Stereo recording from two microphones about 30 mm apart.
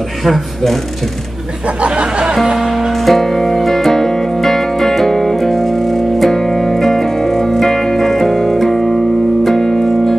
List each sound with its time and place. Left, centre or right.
0.2 s speech: centre
1.8 s speech: right
2.4 s speech: centre
3.1 s music: centre